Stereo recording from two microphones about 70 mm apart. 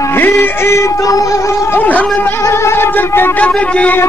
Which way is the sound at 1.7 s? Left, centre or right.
Left.